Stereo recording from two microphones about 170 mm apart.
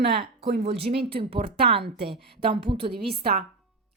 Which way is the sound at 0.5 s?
75° right (ahead or behind).